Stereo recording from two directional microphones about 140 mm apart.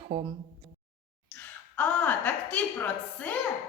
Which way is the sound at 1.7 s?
10° left (ahead or behind).